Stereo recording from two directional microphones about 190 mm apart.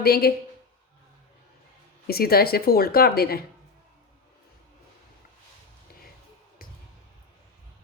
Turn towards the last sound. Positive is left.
turn(degrees=50)  # may be behind; listen again after turning